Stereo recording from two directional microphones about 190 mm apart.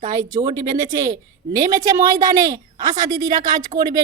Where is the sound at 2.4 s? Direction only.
20° right (ahead or behind).